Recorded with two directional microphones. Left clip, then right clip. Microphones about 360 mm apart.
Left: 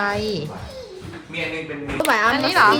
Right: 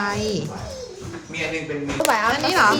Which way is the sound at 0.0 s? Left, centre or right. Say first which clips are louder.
Left 1 dB; centre.